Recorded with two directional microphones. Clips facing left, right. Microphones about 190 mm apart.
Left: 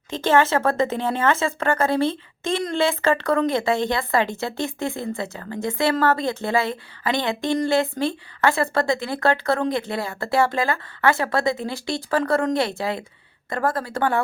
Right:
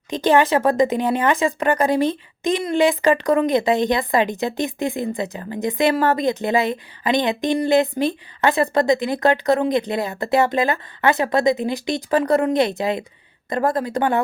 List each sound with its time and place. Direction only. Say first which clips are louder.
0.1 s a woman's voice: right 3 dB; 15° right (ahead or behind)